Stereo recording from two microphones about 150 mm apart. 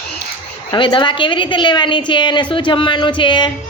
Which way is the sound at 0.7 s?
30° left (ahead or behind).